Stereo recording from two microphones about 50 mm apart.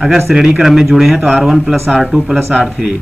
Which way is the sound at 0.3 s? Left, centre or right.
Centre.